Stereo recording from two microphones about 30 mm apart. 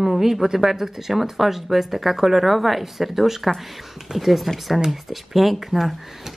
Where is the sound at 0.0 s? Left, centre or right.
Centre.